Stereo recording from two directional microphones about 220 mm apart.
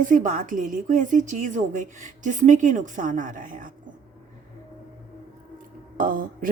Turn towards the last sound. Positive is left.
turn(degrees=-40)  # may be behind; listen again after turning